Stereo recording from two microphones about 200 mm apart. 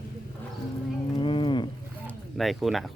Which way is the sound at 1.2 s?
25° left (ahead or behind).